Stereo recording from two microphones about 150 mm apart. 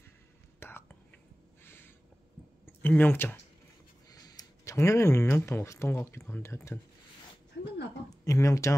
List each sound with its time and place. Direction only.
0.6 s whispering: 15° left (ahead or behind)
1.6 s a sound: 15° left (ahead or behind)
2.6 s speech: 15° left (ahead or behind)
4.1 s speech: 25° left (ahead or behind)
8.1 s speech: 20° left (ahead or behind)